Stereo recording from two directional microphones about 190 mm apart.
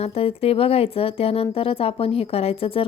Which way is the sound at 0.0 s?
30° left (ahead or behind).